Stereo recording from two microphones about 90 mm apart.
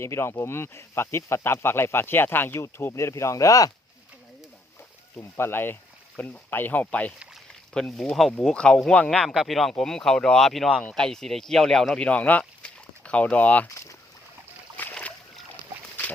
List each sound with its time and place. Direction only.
0.0 s speech: 30° left (ahead or behind)
5.1 s speech: 25° left (ahead or behind)
9.2 s speech: centre (ahead or behind); by 13.7 s 15° left (ahead or behind)
14.8 s boat: 15° left (ahead or behind)